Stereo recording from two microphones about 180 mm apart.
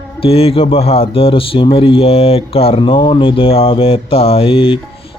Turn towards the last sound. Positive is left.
turn(degrees=30)  # may be behind; listen again after turning